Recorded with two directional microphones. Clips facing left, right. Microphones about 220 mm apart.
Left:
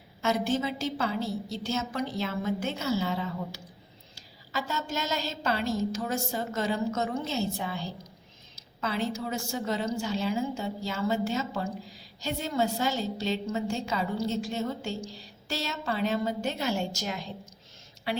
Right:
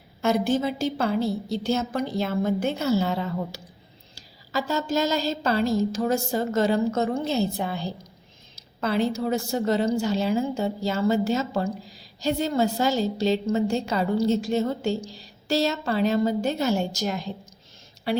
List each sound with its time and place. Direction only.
0.2 s a woman's voice: 55° right (ahead or behind)
4.5 s a woman's voice: 35° right (ahead or behind)
7.5 s a woman's voice: 60° right (ahead or behind)
9.1 s a woman's voice: 35° right (ahead or behind)
9.5 s a woman's voice: 70° right (ahead or behind)
9.8 s a woman's voice: 35° right (ahead or behind)